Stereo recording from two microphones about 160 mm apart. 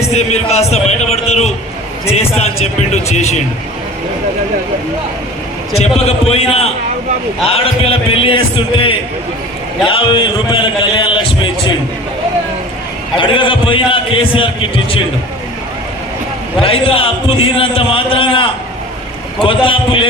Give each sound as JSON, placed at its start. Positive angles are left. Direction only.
{"t": 0.1, "sound": "a sound", "side_deg": 40}
{"t": 2.0, "sound": "a man's voice", "side_deg": 40}
{"t": 5.7, "sound": "a man's voice", "side_deg": 40}
{"t": 13.1, "sound": "a man's voice", "side_deg": 30}
{"t": 16.6, "sound": "a man's voice", "side_deg": 35}